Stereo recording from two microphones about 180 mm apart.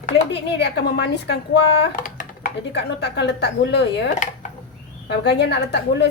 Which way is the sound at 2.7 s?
70° left (ahead or behind).